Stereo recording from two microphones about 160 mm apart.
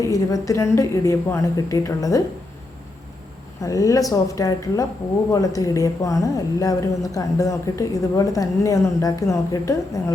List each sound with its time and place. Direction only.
0.1 s a woman's voice: 20° left (ahead or behind)
3.6 s a woman's voice: 20° left (ahead or behind)